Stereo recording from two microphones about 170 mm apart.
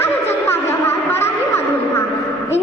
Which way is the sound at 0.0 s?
15° left (ahead or behind).